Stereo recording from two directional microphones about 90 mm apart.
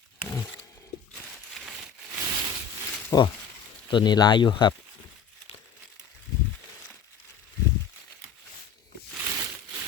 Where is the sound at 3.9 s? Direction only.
55° left (ahead or behind).